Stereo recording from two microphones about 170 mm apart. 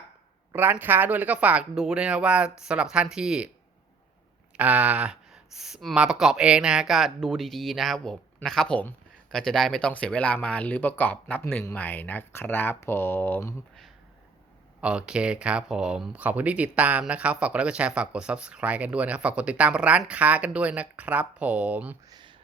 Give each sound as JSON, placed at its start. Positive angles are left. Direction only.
{"t": 0.5, "sound": "speech", "side_deg": -10}
{"t": 4.5, "sound": "speech", "side_deg": -10}
{"t": 14.8, "sound": "speech", "side_deg": -5}
{"t": 22.1, "sound": "a sound", "side_deg": -25}